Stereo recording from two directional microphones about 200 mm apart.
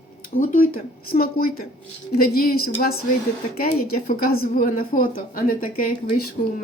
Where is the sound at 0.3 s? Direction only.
40° left (ahead or behind).